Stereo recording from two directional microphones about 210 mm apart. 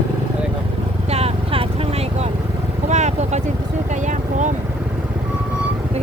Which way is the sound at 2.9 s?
35° right (ahead or behind).